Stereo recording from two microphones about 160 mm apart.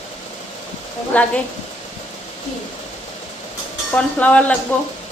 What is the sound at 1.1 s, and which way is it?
Speech, 10° left (ahead or behind).